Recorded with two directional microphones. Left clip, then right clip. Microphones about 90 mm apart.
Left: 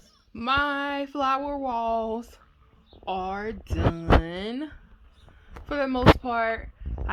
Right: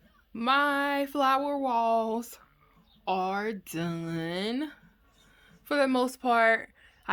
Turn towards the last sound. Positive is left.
turn(degrees=-30)  # may be behind; listen again after turning